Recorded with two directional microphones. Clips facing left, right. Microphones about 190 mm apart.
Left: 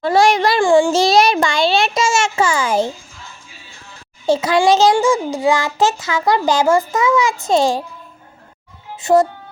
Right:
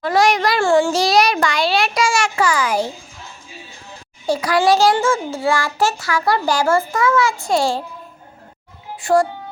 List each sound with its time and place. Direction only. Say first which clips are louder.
0.0 s a sound: left 2 dB; 30° left (ahead or behind)
0.6 s child singing: left 3 dB; 15° left (ahead or behind)
4.3 s a child's voice: left 2 dB; 25° left (ahead or behind)
9.0 s speech: left 3 dB; 20° left (ahead or behind)